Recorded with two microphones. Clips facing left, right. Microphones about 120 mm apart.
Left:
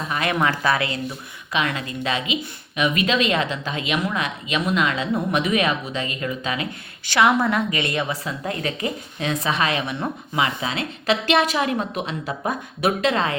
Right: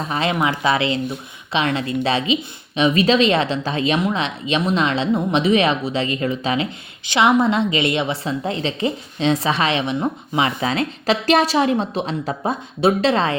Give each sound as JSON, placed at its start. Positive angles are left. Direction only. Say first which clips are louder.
{"t": 0.1, "sound": "a woman's voice", "louder": "right 1 dB", "side_deg": -25}